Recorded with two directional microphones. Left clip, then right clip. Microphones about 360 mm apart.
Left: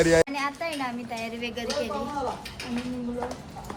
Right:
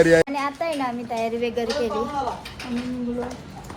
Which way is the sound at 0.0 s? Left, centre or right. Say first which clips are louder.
Right 4 dB; right.